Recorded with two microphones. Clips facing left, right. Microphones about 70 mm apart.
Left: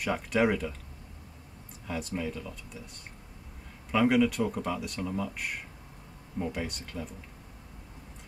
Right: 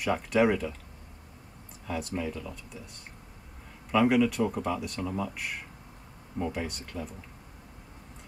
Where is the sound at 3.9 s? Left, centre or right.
Centre.